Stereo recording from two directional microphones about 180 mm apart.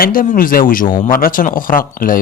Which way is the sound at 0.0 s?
50° left (ahead or behind).